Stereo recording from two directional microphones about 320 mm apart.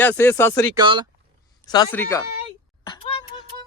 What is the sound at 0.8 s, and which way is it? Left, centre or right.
Speech, centre.